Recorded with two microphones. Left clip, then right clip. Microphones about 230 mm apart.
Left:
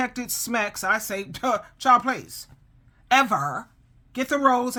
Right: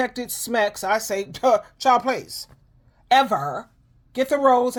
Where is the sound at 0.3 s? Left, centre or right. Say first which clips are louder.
Right 4 dB; centre.